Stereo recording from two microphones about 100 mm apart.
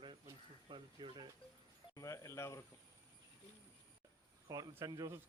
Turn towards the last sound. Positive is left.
turn(degrees=-40)  # may be behind; listen again after turning